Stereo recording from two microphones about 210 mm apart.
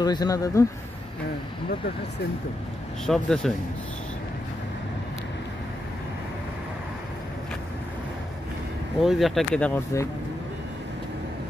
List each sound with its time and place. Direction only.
0.0 s speech: 20° left (ahead or behind)
3.1 s speech: centre (ahead or behind)
9.0 s speech: centre (ahead or behind)